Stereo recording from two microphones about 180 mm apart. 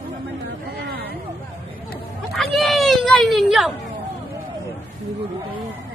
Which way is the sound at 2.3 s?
Centre (ahead or behind).